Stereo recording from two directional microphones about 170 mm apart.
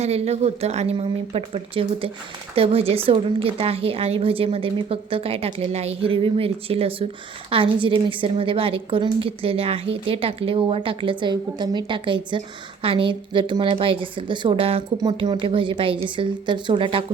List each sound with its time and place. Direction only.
0.0 s a woman's voice: 40° right (ahead or behind)